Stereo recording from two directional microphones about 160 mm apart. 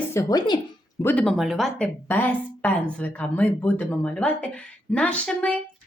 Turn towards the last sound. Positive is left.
turn(degrees=5)  # may be behind; listen again after turning